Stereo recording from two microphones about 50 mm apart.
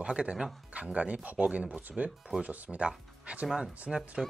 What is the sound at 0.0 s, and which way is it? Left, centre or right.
Speech, right.